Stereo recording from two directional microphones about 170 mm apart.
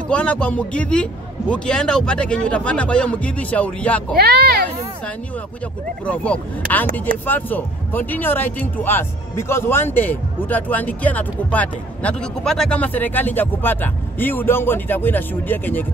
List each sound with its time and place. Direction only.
0.1 s speech: 5° left (ahead or behind)
4.2 s speech: 70° right (ahead or behind)
6.0 s speech: 5° left (ahead or behind)